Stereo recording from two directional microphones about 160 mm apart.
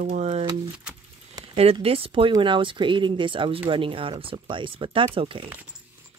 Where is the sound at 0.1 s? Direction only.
45° right (ahead or behind).